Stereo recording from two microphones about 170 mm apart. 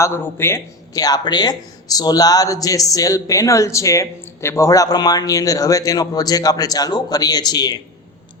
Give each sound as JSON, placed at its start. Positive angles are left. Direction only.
{"t": 0.0, "sound": "speech", "side_deg": 15}